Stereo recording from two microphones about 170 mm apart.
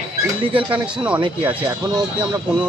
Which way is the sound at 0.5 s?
30° right (ahead or behind).